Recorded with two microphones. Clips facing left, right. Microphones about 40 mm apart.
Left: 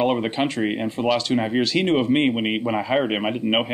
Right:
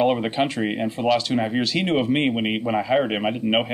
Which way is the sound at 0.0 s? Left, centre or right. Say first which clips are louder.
Right 1 dB; centre.